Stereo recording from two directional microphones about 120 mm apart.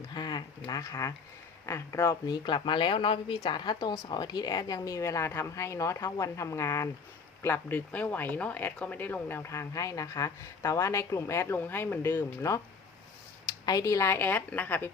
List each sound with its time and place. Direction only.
0.1 s speech: 35° left (ahead or behind)
13.7 s speech: 30° left (ahead or behind)